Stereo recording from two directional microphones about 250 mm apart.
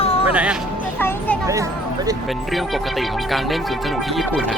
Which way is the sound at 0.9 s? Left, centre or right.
Centre.